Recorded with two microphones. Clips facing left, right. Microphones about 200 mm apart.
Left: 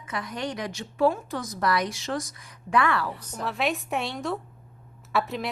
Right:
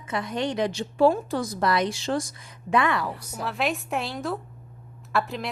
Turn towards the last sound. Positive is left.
turn(degrees=0)  # may be behind; listen again after turning